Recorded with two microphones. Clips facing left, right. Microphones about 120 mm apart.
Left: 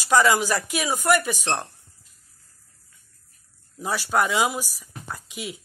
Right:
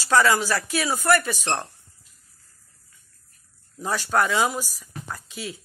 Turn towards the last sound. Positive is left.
turn(degrees=15)  # may be behind; listen again after turning